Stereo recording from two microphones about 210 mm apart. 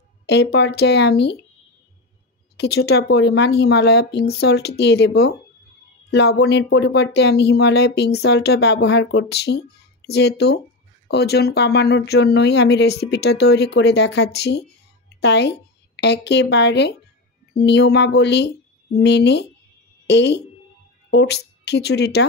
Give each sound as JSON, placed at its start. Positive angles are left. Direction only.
{"t": 0.3, "sound": "speech", "side_deg": 50}
{"t": 2.5, "sound": "a woman's voice", "side_deg": 50}